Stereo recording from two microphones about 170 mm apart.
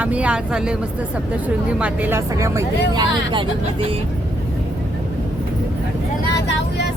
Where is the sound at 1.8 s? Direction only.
10° right (ahead or behind).